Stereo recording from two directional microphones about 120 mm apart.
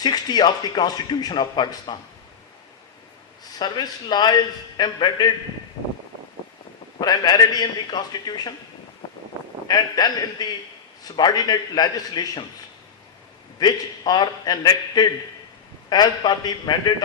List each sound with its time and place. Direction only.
0.0 s a man's voice: 35° left (ahead or behind)
3.6 s a man's voice: 35° left (ahead or behind)
7.0 s a man's voice: 35° left (ahead or behind)
9.6 s a man's voice: 35° left (ahead or behind)
13.6 s a man's voice: 35° left (ahead or behind)